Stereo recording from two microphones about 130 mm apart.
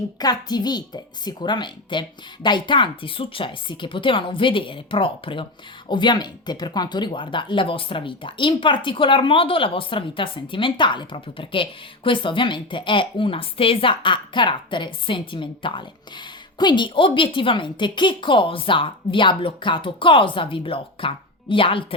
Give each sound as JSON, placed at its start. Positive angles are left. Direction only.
{"t": 0.2, "sound": "speech", "side_deg": 30}